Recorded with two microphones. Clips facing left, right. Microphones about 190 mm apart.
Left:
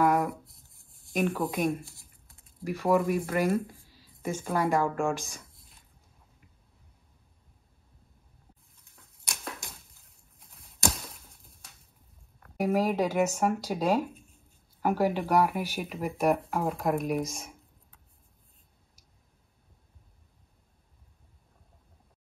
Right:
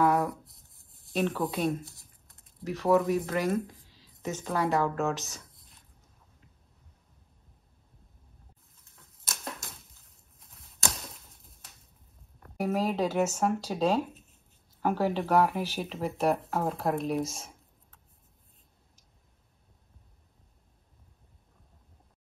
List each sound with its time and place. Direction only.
0.0 s a sound: 10° left (ahead or behind)
0.3 s writing: centre (ahead or behind)
1.1 s speech: 10° left (ahead or behind)
1.7 s speech: centre (ahead or behind)
2.6 s speech: 10° left (ahead or behind)
8.9 s a sound: centre (ahead or behind)
12.5 s speech: 10° left (ahead or behind)